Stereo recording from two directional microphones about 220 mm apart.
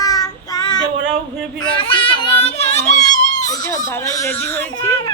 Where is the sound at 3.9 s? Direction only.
15° left (ahead or behind).